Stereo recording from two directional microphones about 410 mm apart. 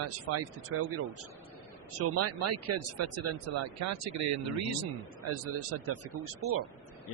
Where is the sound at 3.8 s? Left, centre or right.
Right.